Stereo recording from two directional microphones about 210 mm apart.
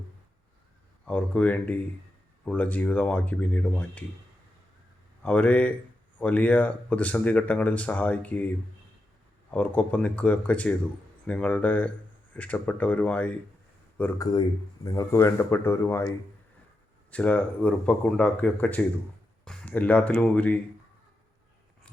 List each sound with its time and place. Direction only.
1.0 s speech: 5° left (ahead or behind)
5.2 s speech: 5° left (ahead or behind)
9.5 s speech: 10° left (ahead or behind)
14.0 s speech: 15° left (ahead or behind)
17.1 s speech: 5° left (ahead or behind)